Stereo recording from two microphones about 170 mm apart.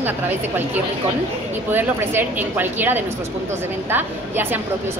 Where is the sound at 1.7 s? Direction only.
10° right (ahead or behind).